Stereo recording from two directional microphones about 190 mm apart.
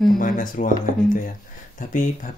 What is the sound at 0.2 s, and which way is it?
Speech, 45° left (ahead or behind).